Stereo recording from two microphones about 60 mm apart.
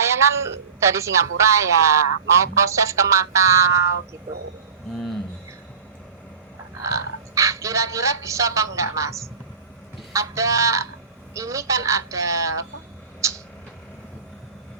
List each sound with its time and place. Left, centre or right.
0.0 s a man's voice: right
6.8 s a man's voice: right
13.2 s a sound: right